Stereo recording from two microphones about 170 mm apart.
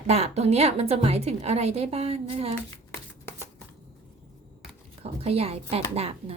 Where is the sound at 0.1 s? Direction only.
40° right (ahead or behind).